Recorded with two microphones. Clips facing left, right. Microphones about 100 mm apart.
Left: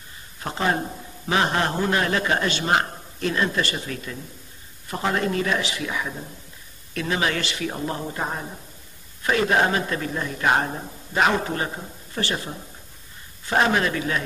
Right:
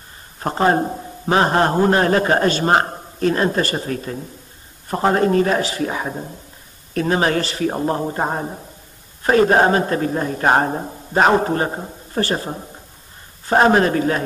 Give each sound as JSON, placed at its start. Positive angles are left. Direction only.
{"t": 0.4, "sound": "a man's voice", "side_deg": -40}